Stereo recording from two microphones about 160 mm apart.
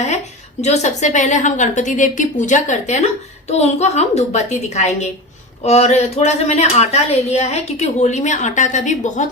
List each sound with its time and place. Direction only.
0.6 s a woman's voice: 45° left (ahead or behind)